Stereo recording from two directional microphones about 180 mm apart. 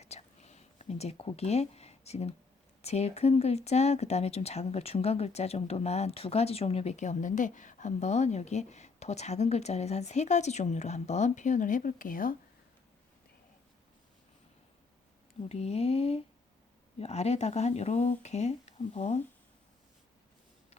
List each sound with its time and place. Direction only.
0.0 s a sound: 35° left (ahead or behind)
2.8 s speech: 35° left (ahead or behind)
15.4 s speech: 35° left (ahead or behind)